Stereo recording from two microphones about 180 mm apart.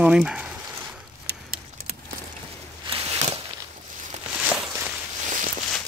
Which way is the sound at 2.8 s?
30° right (ahead or behind).